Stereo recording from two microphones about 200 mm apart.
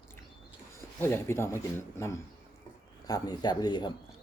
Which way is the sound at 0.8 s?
10° left (ahead or behind).